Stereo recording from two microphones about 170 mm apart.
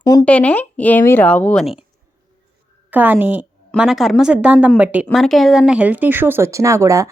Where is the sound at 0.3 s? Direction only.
10° left (ahead or behind).